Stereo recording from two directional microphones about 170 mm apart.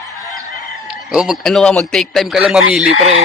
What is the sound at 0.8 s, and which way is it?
A man's voice, 5° right (ahead or behind).